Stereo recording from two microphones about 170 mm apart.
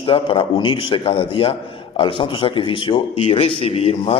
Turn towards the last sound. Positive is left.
turn(degrees=35)  # may be behind; listen again after turning